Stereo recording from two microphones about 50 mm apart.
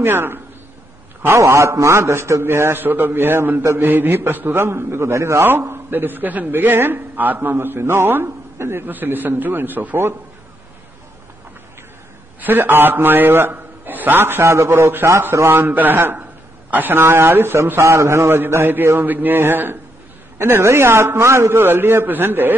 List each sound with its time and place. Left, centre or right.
0.0 s a man's voice: right
1.4 s a man's voice: right
2.8 s a man's voice: right
4.6 s a man's voice: right
5.4 s a man's voice: right
8.8 s a man's voice: right
12.4 s a man's voice: right
14.7 s speech: right
15.5 s a man's voice: right
17.7 s a man's voice: right
18.3 s a man's voice: right
18.9 s a man's voice: right
21.6 s a man's voice: right